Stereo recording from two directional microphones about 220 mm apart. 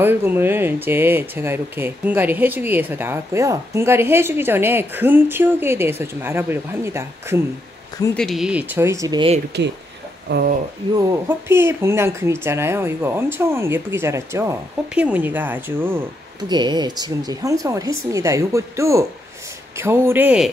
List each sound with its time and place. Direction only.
0.0 s speech: 10° right (ahead or behind)
8.2 s speech: centre (ahead or behind); by 9.4 s 20° right (ahead or behind)
10.3 s speech: 50° right (ahead or behind)
11.0 s speech: 15° right (ahead or behind)
16.4 s speech: 20° right (ahead or behind)